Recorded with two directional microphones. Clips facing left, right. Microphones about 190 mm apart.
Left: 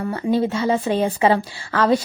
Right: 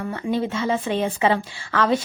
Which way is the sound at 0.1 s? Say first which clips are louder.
Left 5 dB; 35° left (ahead or behind).